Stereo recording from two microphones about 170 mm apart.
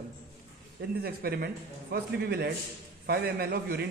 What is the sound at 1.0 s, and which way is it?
Speech, 65° right (ahead or behind).